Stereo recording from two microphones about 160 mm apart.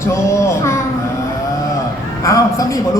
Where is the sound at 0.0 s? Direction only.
20° left (ahead or behind).